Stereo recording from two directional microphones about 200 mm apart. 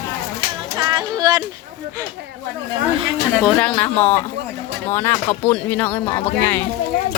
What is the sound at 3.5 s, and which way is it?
Speech, 5° left (ahead or behind).